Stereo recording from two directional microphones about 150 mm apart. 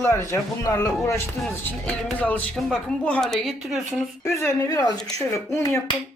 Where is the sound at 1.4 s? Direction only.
10° left (ahead or behind).